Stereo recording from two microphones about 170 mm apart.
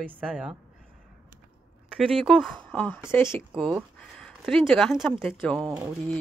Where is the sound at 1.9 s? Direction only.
5° left (ahead or behind).